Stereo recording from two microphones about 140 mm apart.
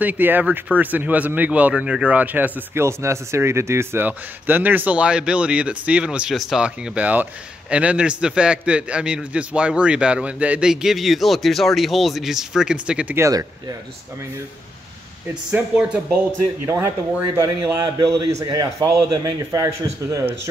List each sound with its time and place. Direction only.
0.0 s speech: 15° right (ahead or behind)
15.5 s speech: 10° right (ahead or behind)
16.6 s a man's voice: 20° right (ahead or behind)